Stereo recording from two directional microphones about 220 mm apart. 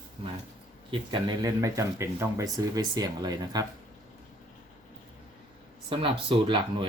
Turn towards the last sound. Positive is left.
turn(degrees=-25)  # may be behind; listen again after turning